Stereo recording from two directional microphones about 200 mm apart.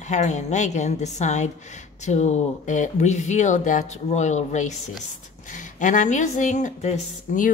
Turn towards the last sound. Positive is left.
turn(degrees=40)  # may be behind; listen again after turning